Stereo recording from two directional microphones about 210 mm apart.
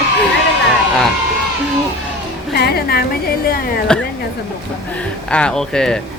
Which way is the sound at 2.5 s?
50° left (ahead or behind).